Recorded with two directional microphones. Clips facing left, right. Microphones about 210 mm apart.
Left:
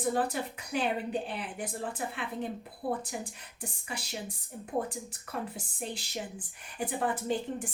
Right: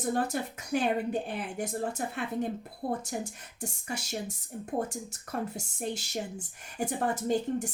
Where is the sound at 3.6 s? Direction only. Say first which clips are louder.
Right 4 dB; 45° right (ahead or behind).